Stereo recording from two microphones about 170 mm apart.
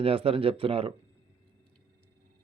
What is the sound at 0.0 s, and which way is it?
Speech, 35° right (ahead or behind).